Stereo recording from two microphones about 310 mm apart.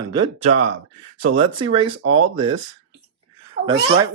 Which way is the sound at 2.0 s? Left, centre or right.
Right.